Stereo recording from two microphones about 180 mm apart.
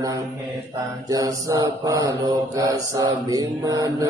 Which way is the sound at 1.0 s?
20° right (ahead or behind).